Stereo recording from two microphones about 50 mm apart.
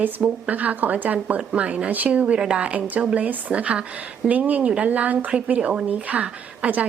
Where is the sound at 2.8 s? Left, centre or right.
Right.